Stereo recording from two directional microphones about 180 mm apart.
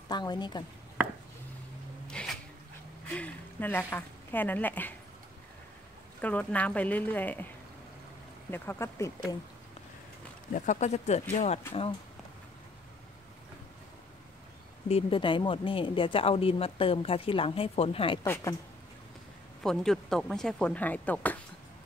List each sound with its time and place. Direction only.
0.1 s speech: 25° left (ahead or behind)
2.0 s music: 5° left (ahead or behind)
3.2 s speech: 10° left (ahead or behind)
6.2 s speech: 10° left (ahead or behind)
8.5 s speech: 15° left (ahead or behind)
10.5 s speech: 45° left (ahead or behind)
14.9 s speech: 30° left (ahead or behind)
18.2 s speech: 15° left (ahead or behind)
19.6 s speech: centre (ahead or behind)